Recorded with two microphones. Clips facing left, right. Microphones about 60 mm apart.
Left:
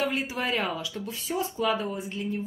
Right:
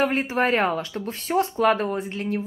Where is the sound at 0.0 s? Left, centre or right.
Right.